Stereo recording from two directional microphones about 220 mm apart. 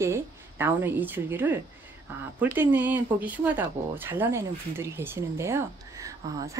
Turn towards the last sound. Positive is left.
turn(degrees=-15)  # may be behind; listen again after turning